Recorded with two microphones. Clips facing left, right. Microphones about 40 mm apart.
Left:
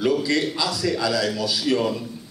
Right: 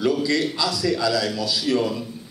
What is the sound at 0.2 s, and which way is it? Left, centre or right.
A man's voice, centre.